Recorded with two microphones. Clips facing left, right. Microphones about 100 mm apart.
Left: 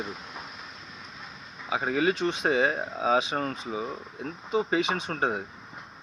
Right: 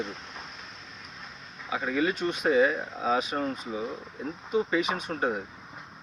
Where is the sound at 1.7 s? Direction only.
75° left (ahead or behind).